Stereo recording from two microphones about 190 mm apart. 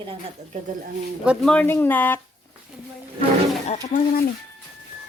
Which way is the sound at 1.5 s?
10° left (ahead or behind).